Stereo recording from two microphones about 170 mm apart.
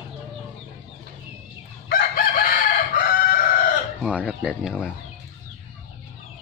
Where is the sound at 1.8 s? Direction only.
60° left (ahead or behind).